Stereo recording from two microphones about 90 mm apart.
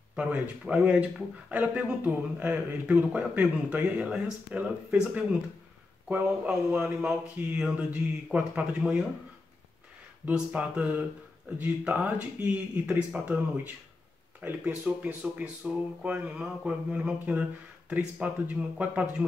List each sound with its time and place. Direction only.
0.1 s speech: 15° right (ahead or behind)
10.2 s speech: 15° right (ahead or behind)
14.4 s speech: 15° right (ahead or behind)